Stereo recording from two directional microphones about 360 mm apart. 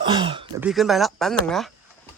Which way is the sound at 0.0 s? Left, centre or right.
Centre.